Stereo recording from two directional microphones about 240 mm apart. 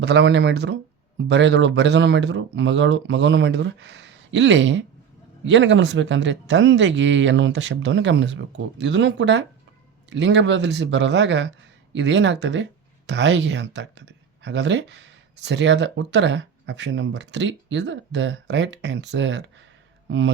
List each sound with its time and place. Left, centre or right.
0.0 s speech: right